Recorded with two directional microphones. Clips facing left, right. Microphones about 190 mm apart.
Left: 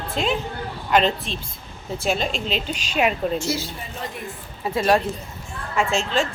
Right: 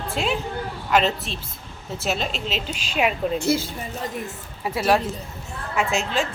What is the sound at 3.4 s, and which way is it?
Speech, 55° right (ahead or behind).